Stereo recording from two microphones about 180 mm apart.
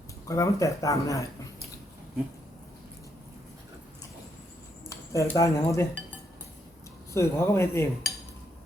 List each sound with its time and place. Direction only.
0.3 s speech: 20° left (ahead or behind)
4.9 s speech: 15° left (ahead or behind)
7.1 s speech: 15° left (ahead or behind)